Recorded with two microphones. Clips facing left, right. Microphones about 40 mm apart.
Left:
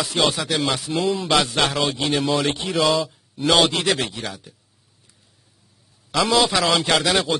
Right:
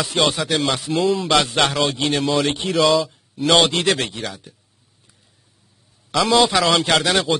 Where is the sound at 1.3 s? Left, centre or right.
Centre.